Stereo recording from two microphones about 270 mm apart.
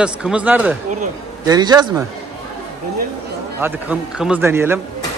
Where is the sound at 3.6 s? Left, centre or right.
Centre.